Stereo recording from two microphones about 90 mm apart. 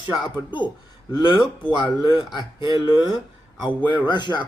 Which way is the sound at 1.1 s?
60° left (ahead or behind).